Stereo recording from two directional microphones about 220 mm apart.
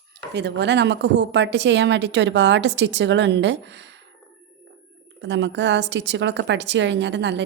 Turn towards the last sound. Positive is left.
turn(degrees=-55)  # may be behind; listen again after turning